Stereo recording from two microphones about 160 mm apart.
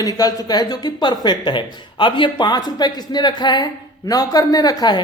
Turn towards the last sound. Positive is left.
turn(degrees=25)  # may be behind; listen again after turning